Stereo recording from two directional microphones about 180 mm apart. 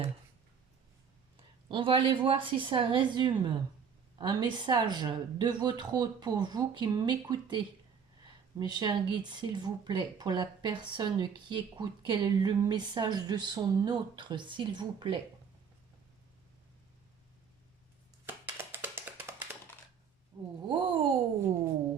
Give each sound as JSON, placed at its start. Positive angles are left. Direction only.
{"t": 1.7, "sound": "speech", "side_deg": -30}
{"t": 18.3, "sound": "a sound", "side_deg": -10}
{"t": 20.3, "sound": "speech", "side_deg": -25}